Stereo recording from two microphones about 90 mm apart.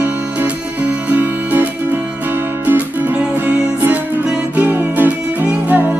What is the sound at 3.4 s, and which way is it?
Music, 20° right (ahead or behind).